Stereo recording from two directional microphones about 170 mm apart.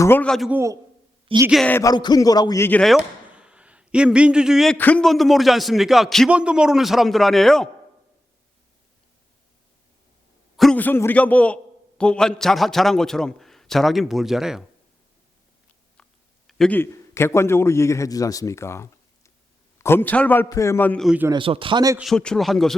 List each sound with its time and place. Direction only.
0.0 s a man's voice: 10° left (ahead or behind)
0.5 s a man's voice: 15° right (ahead or behind)
1.3 s a woman's voice: 30° right (ahead or behind)
1.6 s speech: 15° left (ahead or behind)
2.8 s a man's voice: 5° right (ahead or behind)
10.6 s a man's voice: 5° left (ahead or behind)
16.0 s a sound: 5° left (ahead or behind)
16.5 s a man's voice: 5° left (ahead or behind)
21.2 s speech: 30° right (ahead or behind)
21.9 s a man's voice: centre (ahead or behind)